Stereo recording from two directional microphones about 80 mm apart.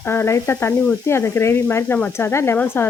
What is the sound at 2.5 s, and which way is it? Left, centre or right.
Stir, left.